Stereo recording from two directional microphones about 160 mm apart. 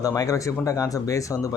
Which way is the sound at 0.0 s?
20° left (ahead or behind).